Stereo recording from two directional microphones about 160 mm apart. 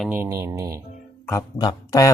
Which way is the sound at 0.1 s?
15° right (ahead or behind).